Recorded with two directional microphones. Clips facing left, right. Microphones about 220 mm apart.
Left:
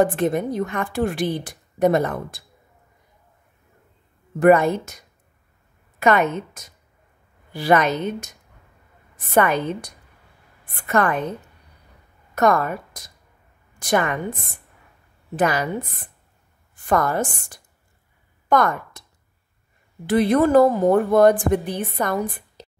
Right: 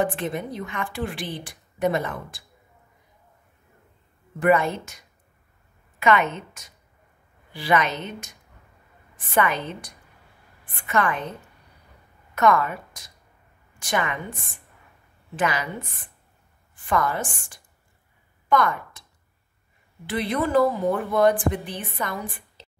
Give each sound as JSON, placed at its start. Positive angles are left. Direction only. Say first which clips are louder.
{"t": 0.0, "sound": "a woman's voice", "louder": "left 7 dB", "side_deg": 40}
{"t": 4.4, "sound": "a woman's voice", "louder": "left 6 dB", "side_deg": 45}
{"t": 10.6, "sound": "a woman's voice", "louder": "left 4 dB", "side_deg": 40}
{"t": 12.4, "sound": "a woman's voice", "louder": "left 2 dB", "side_deg": 40}
{"t": 15.3, "sound": "a woman's voice", "louder": "left 5 dB", "side_deg": 40}
{"t": 20.1, "sound": "a woman's voice", "louder": "left 8 dB", "side_deg": 45}